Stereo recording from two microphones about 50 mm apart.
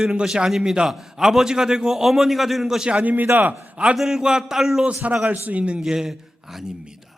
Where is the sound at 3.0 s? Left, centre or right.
Right.